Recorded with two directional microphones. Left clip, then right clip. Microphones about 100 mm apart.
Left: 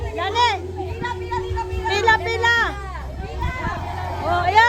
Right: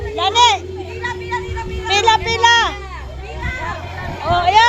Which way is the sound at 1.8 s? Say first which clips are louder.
Right 4 dB; 20° left (ahead or behind).